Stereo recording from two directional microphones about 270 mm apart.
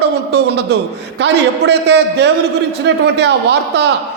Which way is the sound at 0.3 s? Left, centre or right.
Right.